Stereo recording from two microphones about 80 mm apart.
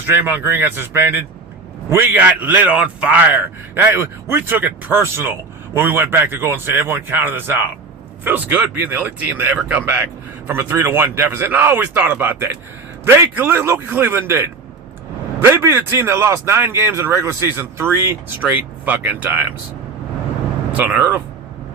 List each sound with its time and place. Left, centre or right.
0.0 s a man's voice: right
3.3 s a man's voice: right
10.6 s a man's voice: right
20.7 s a man's voice: centre